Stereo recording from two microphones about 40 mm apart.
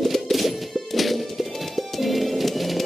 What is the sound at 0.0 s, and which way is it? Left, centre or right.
Music, centre.